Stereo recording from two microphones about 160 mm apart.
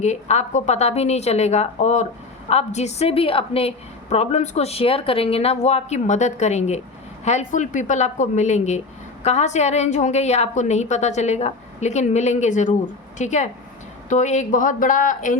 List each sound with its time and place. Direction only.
0.0 s a woman's voice: 45° left (ahead or behind)